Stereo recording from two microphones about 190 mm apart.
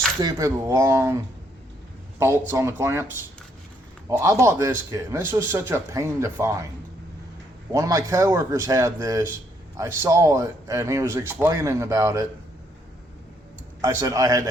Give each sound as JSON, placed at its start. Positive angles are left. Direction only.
{"t": 0.2, "sound": "speech", "side_deg": -20}
{"t": 4.2, "sound": "speech", "side_deg": -15}
{"t": 7.7, "sound": "speech", "side_deg": -15}
{"t": 13.8, "sound": "speech", "side_deg": -15}